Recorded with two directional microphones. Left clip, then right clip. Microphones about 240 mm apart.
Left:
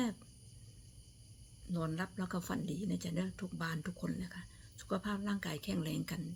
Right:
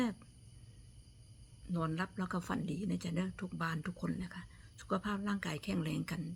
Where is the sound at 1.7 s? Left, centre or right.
Centre.